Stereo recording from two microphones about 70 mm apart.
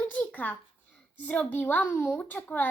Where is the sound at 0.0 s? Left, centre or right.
Centre.